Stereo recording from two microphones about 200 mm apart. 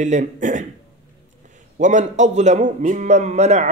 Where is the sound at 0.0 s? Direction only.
35° right (ahead or behind).